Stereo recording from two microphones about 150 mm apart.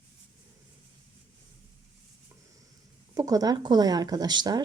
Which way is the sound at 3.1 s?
25° right (ahead or behind).